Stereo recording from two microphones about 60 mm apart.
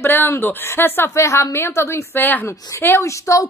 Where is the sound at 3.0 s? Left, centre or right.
Left.